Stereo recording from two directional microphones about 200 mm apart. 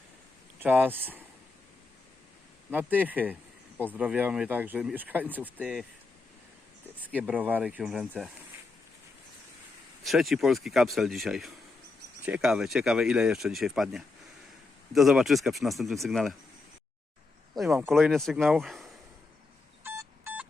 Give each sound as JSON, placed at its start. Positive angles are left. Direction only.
{"t": 0.6, "sound": "speech", "side_deg": -10}
{"t": 2.6, "sound": "speech", "side_deg": -10}
{"t": 7.0, "sound": "speech", "side_deg": -10}
{"t": 10.0, "sound": "speech", "side_deg": 0}
{"t": 17.6, "sound": "speech", "side_deg": -5}
{"t": 19.8, "sound": "telephone dialing", "side_deg": -10}